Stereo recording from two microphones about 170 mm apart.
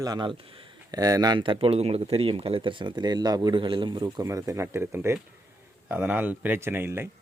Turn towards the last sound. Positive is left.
turn(degrees=-15)  # may be behind; listen again after turning